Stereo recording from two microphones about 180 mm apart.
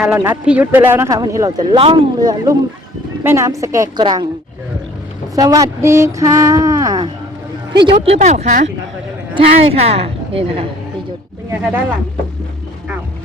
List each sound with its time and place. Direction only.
0.0 s speech: 10° right (ahead or behind)
5.3 s a sound: 20° right (ahead or behind)
7.9 s a woman's voice: 35° right (ahead or behind)
11.5 s speech: 10° right (ahead or behind)